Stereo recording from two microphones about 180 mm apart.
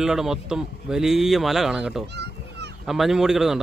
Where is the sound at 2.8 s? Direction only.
Centre (ahead or behind).